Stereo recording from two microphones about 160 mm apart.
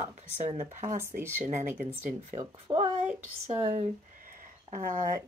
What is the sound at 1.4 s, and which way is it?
Speech, 45° right (ahead or behind).